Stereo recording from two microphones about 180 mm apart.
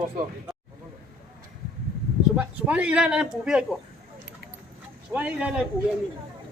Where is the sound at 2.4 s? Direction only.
10° right (ahead or behind).